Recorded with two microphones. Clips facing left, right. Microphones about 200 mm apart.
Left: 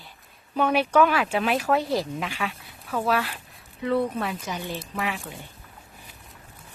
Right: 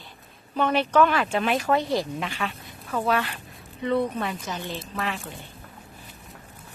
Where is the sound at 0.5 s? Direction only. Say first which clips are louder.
Left 1 dB; 10° left (ahead or behind).